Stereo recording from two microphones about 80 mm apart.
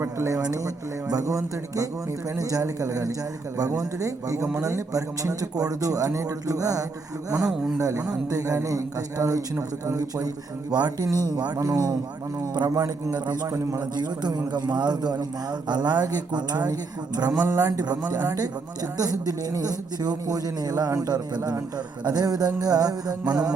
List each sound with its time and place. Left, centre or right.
0.0 s a man's voice: right
7.4 s a man's voice: centre
7.8 s a man's voice: right
10.7 s a man's voice: right
11.3 s music: right
11.6 s a man's voice: right
13.1 s music: right
17.4 s a man's voice: right
19.2 s a man's voice: right
21.1 s music: right